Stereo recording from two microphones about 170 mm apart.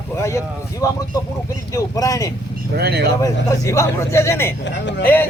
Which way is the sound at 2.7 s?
70° right (ahead or behind).